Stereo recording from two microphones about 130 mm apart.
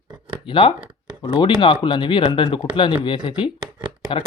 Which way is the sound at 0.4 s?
40° left (ahead or behind).